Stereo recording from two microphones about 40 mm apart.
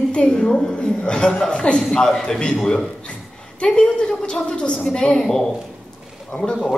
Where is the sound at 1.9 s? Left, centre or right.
Centre.